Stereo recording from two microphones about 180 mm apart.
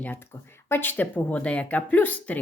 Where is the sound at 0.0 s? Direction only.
10° left (ahead or behind).